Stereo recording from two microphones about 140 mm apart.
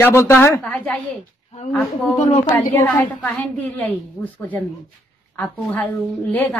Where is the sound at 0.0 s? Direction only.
20° left (ahead or behind).